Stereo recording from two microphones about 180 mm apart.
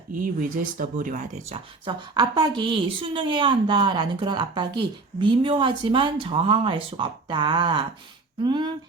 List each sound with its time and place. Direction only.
0.1 s speech: 50° right (ahead or behind); by 8.7 s 25° right (ahead or behind)